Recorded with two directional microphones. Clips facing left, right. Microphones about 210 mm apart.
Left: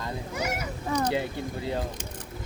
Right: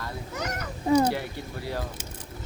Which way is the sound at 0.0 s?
10° left (ahead or behind).